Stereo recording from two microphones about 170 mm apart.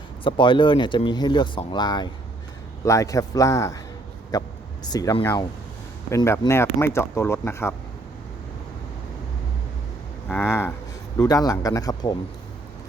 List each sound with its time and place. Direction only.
0.3 s speech: 30° left (ahead or behind)
4.3 s a sound: 25° left (ahead or behind)
5.2 s speech: 20° left (ahead or behind)
10.2 s speech: 10° left (ahead or behind)